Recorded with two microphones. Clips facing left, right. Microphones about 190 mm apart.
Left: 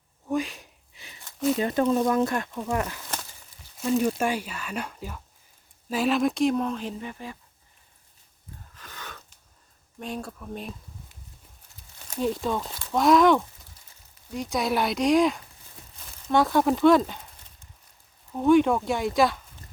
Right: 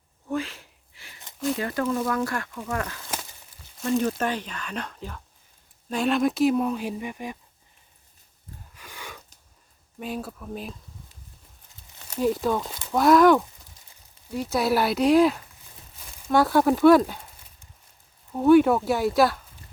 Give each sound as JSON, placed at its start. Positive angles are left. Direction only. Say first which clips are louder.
{"t": 0.3, "sound": "a sound", "louder": "left 2 dB", "side_deg": 15}
{"t": 1.5, "sound": "speech", "louder": "left 4 dB", "side_deg": 20}
{"t": 3.8, "sound": "speech", "louder": "even", "side_deg": 5}
{"t": 8.7, "sound": "gasp", "louder": "right 1 dB", "side_deg": -10}
{"t": 10.0, "sound": "speech", "louder": "right 2 dB", "side_deg": -5}
{"t": 12.2, "sound": "speech", "louder": "right 3 dB", "side_deg": 0}
{"t": 18.3, "sound": "speech", "louder": "right 3 dB", "side_deg": -5}